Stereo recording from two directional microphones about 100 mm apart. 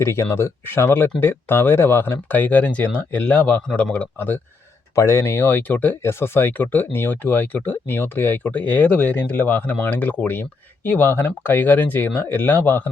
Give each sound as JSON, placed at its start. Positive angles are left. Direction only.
{"t": 0.0, "sound": "speech", "side_deg": 25}